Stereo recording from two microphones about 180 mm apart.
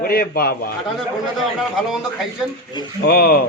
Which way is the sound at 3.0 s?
55° left (ahead or behind).